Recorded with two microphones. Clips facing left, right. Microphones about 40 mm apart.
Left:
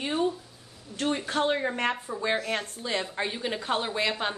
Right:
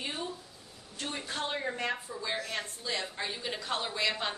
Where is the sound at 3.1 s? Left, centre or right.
Left.